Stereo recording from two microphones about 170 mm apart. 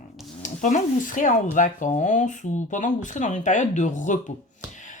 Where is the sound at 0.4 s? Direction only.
50° left (ahead or behind).